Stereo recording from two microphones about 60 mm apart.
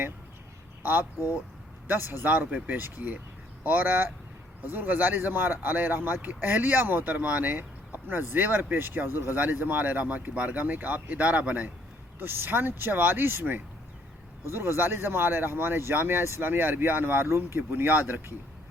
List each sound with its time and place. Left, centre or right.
0.8 s speech: right
2.2 s speech: right
12.2 s speech: right
16.4 s speech: right
17.6 s speech: right